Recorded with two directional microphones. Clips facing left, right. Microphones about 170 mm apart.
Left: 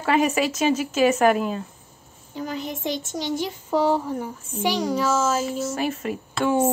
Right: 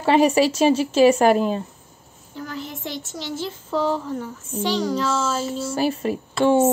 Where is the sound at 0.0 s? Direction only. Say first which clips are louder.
Right 4 dB; 30° right (ahead or behind).